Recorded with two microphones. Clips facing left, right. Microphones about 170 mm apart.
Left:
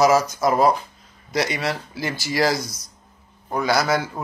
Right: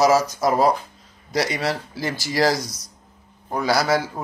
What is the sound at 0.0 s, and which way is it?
Speech, 35° right (ahead or behind).